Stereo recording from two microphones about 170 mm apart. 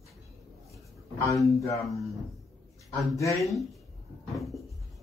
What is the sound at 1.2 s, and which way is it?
Speech, 20° left (ahead or behind).